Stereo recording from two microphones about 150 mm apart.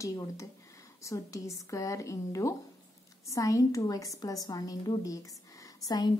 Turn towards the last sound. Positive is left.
turn(degrees=25)  # may be behind; listen again after turning